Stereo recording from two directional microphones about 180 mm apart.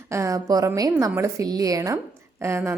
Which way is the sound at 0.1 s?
15° right (ahead or behind).